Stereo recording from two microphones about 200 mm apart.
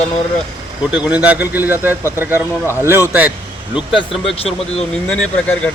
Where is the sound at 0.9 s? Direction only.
5° right (ahead or behind).